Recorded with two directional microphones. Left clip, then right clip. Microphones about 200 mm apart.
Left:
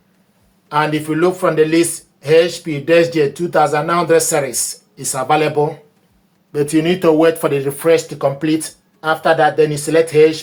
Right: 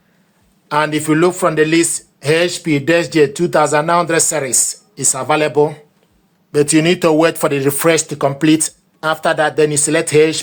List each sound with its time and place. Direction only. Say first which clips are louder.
0.7 s speech: right 2 dB; 60° right (ahead or behind)
6.5 s speech: right 3 dB; 45° right (ahead or behind); by 10.4 s 60° right (ahead or behind)